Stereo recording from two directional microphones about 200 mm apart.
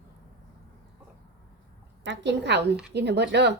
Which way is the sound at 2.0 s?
65° right (ahead or behind).